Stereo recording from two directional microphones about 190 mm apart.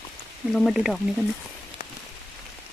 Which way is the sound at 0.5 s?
Centre (ahead or behind).